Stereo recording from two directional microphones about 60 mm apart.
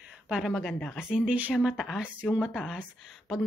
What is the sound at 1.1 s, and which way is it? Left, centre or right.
Speech, centre.